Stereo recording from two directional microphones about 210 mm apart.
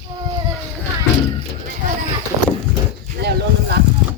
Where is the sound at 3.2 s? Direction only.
55° right (ahead or behind).